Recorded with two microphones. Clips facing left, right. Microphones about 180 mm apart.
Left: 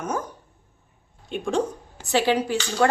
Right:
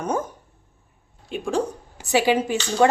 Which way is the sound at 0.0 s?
30° right (ahead or behind).